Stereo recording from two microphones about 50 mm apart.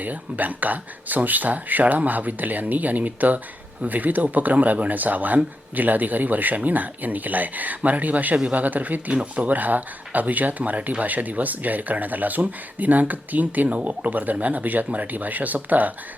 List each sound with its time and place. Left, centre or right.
0.0 s speech: right